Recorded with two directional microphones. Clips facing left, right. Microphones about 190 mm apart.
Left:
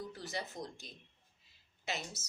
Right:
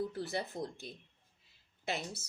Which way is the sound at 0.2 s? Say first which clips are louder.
Right 5 dB; 60° right (ahead or behind).